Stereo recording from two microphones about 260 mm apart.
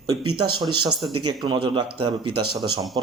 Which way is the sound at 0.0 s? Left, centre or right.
Centre.